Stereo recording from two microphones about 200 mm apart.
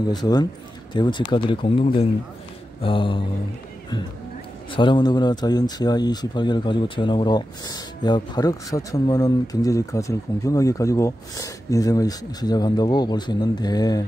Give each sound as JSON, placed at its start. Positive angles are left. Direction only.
{"t": 0.1, "sound": "speech", "side_deg": 20}
{"t": 4.7, "sound": "speech", "side_deg": 25}